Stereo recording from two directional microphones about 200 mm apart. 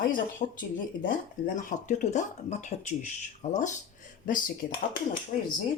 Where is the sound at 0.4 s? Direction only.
40° left (ahead or behind).